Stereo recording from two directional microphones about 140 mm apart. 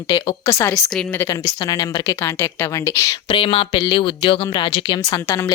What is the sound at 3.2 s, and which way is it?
Speech, 40° left (ahead or behind).